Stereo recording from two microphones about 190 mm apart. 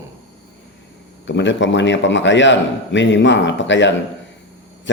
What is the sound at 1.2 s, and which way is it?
A man's voice, 70° left (ahead or behind).